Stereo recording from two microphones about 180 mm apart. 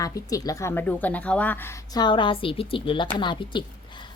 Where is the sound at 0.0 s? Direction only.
20° left (ahead or behind).